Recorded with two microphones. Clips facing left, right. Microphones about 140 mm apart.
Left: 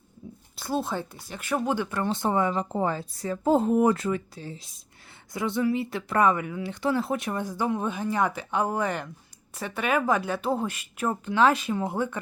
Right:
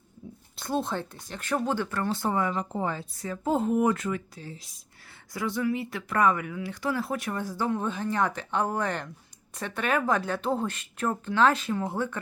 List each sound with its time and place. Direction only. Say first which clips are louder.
0.5 s speech: left 1 dB; 5° left (ahead or behind)